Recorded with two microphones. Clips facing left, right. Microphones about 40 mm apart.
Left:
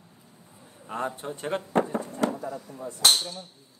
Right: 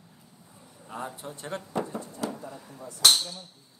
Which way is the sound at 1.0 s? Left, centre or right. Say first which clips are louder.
Left 7 dB; left.